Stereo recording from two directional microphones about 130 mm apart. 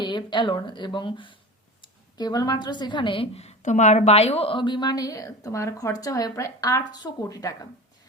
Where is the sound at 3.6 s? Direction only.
65° left (ahead or behind); by 7.5 s 30° left (ahead or behind).